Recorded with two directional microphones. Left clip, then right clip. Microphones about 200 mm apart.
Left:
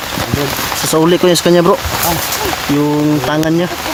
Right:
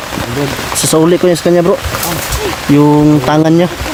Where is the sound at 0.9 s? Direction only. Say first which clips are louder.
Right 1 dB; centre (ahead or behind).